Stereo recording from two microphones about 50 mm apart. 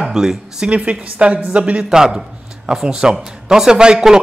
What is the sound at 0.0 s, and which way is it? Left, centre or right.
Speech, centre.